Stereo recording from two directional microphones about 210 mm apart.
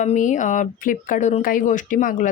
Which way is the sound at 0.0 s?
35° left (ahead or behind).